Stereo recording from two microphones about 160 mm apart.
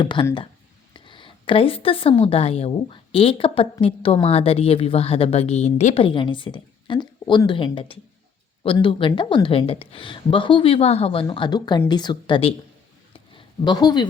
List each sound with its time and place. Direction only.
0.0 s a woman's voice: 30° left (ahead or behind)